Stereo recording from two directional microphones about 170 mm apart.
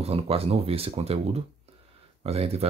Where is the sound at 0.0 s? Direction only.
35° right (ahead or behind).